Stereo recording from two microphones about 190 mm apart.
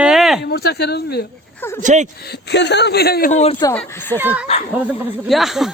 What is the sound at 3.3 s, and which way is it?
Speech, 35° left (ahead or behind).